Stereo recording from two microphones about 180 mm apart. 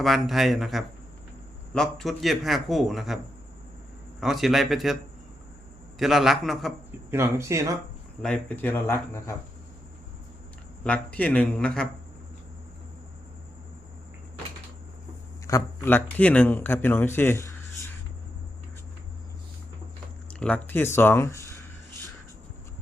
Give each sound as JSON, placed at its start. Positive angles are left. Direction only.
{"t": 0.0, "sound": "a man's voice", "side_deg": 0}
{"t": 4.2, "sound": "a man's voice", "side_deg": 0}
{"t": 6.0, "sound": "a man's voice", "side_deg": 0}
{"t": 7.1, "sound": "speech", "side_deg": -15}
{"t": 8.2, "sound": "a man's voice", "side_deg": 5}
{"t": 10.8, "sound": "a man's voice", "side_deg": 5}
{"t": 15.4, "sound": "a man's voice", "side_deg": 15}
{"t": 20.4, "sound": "a man's voice", "side_deg": 10}